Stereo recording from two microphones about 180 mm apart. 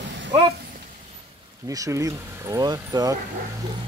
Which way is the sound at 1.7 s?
20° right (ahead or behind).